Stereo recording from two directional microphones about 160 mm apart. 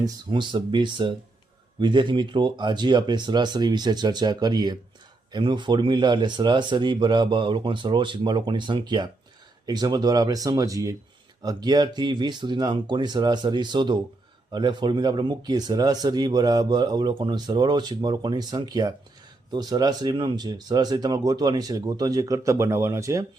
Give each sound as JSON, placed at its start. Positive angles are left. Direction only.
{"t": 0.0, "sound": "speech", "side_deg": -30}